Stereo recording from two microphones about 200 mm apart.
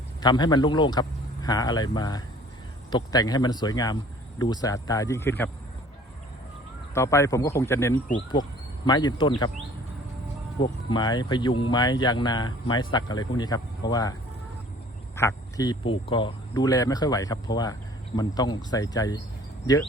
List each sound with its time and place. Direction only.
0.2 s speech: 20° left (ahead or behind)
6.9 s speech: 15° left (ahead or behind)
10.6 s speech: 25° left (ahead or behind)